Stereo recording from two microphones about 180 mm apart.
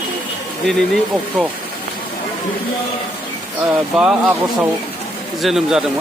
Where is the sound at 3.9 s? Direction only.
5° right (ahead or behind).